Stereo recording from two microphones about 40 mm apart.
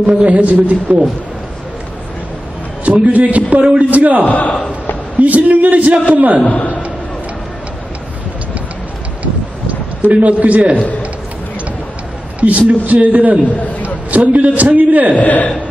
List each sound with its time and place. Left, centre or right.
0.2 s a man's voice: right
2.8 s a man's voice: right
4.3 s a man's voice: left
5.2 s a man's voice: right
6.4 s a man's voice: left
9.2 s a sound: right
12.4 s a man's voice: right
15.1 s a man's voice: left